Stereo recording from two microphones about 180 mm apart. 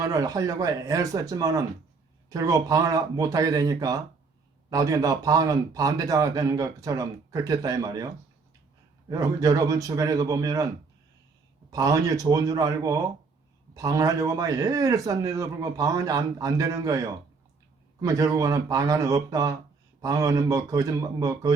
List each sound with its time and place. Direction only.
0.0 s a man's voice: 20° right (ahead or behind)
11.7 s a man's voice: 20° right (ahead or behind)